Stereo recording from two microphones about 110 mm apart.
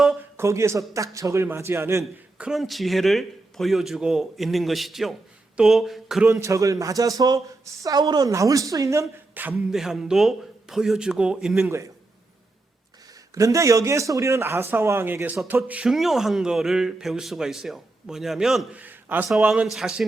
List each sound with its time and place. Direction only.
0.3 s a man's voice: 25° right (ahead or behind)
2.4 s speech: centre (ahead or behind)
6.2 s speech: 25° right (ahead or behind)
9.3 s music: 15° right (ahead or behind)
9.6 s speech: 5° right (ahead or behind)
13.3 s a man's voice: 30° right (ahead or behind); by 18.8 s 5° right (ahead or behind)
18.8 s a sound: 15° right (ahead or behind)
19.4 s a man's voice: 10° right (ahead or behind)